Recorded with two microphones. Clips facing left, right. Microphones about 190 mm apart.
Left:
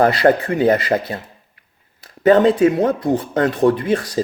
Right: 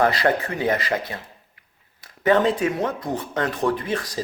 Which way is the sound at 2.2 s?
35° left (ahead or behind).